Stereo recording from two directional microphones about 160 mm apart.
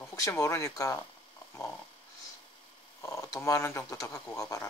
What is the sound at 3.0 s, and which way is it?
Speech, 20° left (ahead or behind).